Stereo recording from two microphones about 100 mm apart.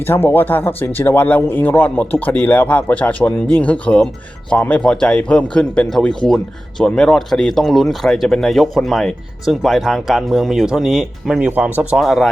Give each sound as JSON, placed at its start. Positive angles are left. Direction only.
{"t": 0.1, "sound": "speech", "side_deg": 20}
{"t": 11.9, "sound": "speech", "side_deg": 0}